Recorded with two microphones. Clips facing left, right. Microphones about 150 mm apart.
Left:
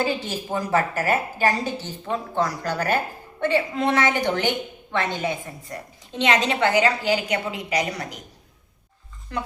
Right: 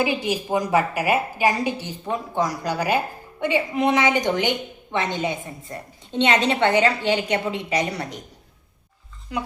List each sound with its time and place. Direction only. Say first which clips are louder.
0.0 s a woman's voice: right 2 dB; 15° right (ahead or behind); by 8.2 s 30° right (ahead or behind)
9.3 s a woman's voice: right 1 dB; 10° right (ahead or behind)